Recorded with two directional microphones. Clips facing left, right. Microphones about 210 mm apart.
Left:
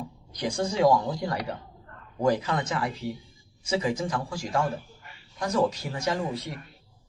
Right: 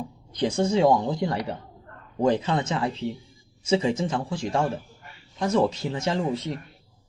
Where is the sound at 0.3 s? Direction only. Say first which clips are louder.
Right 4 dB; 25° right (ahead or behind).